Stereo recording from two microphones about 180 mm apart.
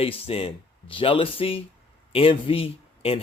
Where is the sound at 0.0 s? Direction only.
30° left (ahead or behind).